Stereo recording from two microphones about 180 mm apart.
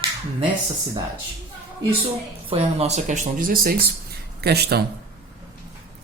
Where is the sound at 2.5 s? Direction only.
35° right (ahead or behind); by 4.8 s 65° right (ahead or behind).